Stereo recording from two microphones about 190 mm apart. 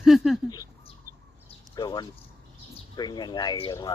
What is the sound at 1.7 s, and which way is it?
Speech, 20° left (ahead or behind).